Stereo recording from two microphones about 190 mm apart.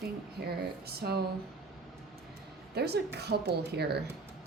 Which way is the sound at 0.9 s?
55° right (ahead or behind).